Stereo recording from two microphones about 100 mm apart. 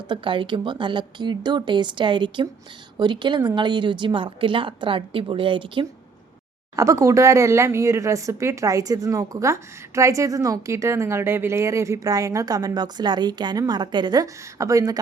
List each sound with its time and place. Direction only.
0.1 s a woman's voice: 55° right (ahead or behind)
6.7 s speech: 30° right (ahead or behind)